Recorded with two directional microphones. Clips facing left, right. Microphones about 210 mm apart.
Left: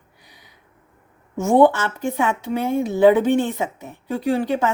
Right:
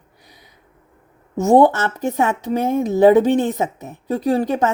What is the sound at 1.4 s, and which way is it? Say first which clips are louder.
A woman's voice: right 2 dB; 40° right (ahead or behind).